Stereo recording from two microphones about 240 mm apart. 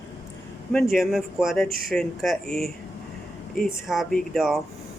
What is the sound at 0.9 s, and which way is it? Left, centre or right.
Speech, centre.